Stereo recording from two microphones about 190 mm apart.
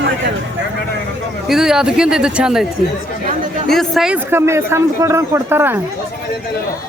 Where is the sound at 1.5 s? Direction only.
5° right (ahead or behind).